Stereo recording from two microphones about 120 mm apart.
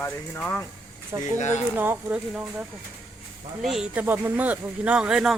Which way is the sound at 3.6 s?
Centre (ahead or behind).